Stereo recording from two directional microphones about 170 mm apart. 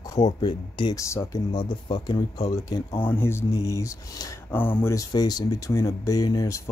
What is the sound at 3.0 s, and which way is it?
Speech, 10° left (ahead or behind).